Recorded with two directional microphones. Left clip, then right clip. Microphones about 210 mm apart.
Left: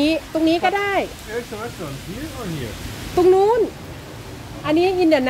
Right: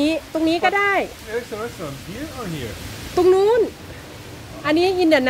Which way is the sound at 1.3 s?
55° right (ahead or behind).